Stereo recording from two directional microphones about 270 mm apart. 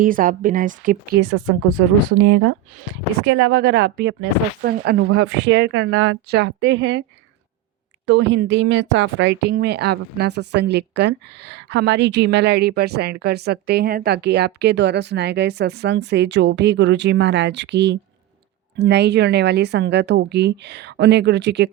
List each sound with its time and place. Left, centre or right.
0.0 s speech: right
2.1 s speech: right
8.0 s speech: right